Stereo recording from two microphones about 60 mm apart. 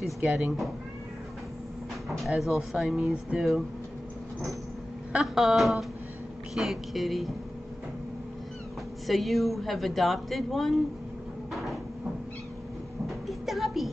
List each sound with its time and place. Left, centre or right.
0.2 s speech: centre
2.0 s a woman's voice: centre
3.0 s speech: centre
5.2 s a woman's voice: centre
9.0 s a woman's voice: centre
11.5 s cupboard open or close: centre
13.3 s a sound: centre